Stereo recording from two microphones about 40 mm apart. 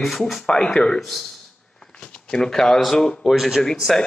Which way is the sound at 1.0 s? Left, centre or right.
Centre.